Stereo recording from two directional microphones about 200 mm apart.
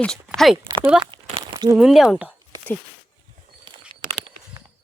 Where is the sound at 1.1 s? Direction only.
20° right (ahead or behind).